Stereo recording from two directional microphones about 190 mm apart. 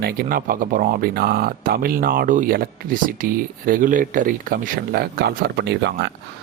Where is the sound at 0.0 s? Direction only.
50° right (ahead or behind).